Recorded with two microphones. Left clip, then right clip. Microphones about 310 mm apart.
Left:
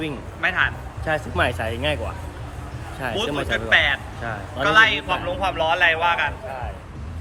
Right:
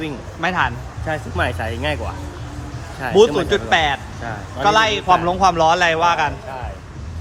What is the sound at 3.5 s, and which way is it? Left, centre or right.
Speech, centre.